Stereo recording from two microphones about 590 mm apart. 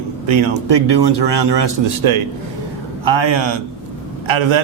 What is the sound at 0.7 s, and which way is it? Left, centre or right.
Speech, right.